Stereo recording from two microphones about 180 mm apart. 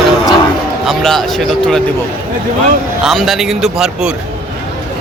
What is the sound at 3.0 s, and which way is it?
A man's voice, centre (ahead or behind).